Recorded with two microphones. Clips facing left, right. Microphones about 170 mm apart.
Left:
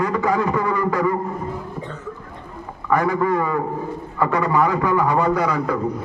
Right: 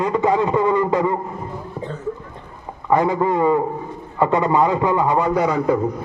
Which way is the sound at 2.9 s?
25° right (ahead or behind).